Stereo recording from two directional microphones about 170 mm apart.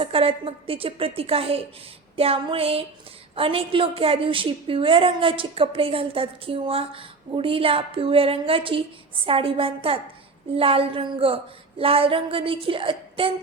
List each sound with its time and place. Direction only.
0.0 s a woman's voice: 35° right (ahead or behind)